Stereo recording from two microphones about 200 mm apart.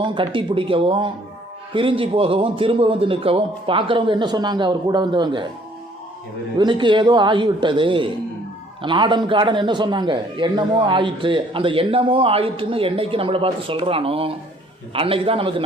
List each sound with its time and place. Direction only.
0.0 s a man's voice: 25° right (ahead or behind)
6.6 s a man's voice: 25° right (ahead or behind)